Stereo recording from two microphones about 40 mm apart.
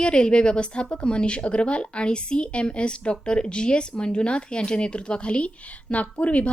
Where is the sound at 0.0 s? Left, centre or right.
Left.